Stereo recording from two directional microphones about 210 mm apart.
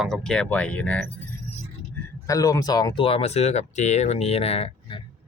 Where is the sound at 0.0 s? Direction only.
5° left (ahead or behind).